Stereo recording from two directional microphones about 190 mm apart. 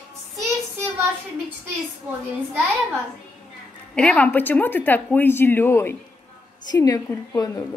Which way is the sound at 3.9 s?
5° left (ahead or behind).